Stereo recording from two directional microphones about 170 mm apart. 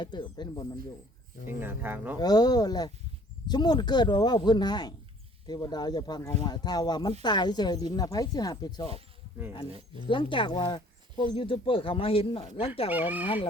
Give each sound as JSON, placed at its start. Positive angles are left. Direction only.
{"t": 0.0, "sound": "speech", "side_deg": 25}
{"t": 1.5, "sound": "speech", "side_deg": -10}
{"t": 2.1, "sound": "speech", "side_deg": 25}
{"t": 10.1, "sound": "speech", "side_deg": 30}
{"t": 12.9, "sound": "speech", "side_deg": -10}
{"t": 13.2, "sound": "speech", "side_deg": 30}